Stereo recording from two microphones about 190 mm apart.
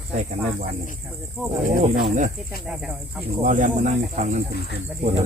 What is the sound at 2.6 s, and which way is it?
Speech, centre (ahead or behind).